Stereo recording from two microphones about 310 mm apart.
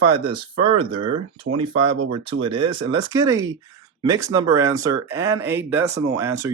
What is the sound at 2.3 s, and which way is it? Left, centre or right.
Speech, right.